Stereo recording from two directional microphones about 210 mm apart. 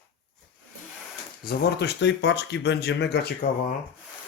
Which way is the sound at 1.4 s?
55° left (ahead or behind).